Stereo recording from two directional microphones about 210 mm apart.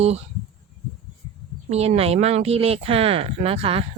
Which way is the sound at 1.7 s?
30° right (ahead or behind).